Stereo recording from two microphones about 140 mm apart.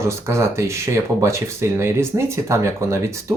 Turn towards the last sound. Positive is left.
turn(degrees=-20)  # may be behind; listen again after turning